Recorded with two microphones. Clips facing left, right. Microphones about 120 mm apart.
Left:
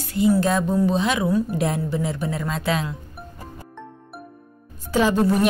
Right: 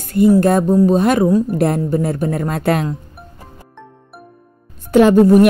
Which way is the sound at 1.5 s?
55° right (ahead or behind).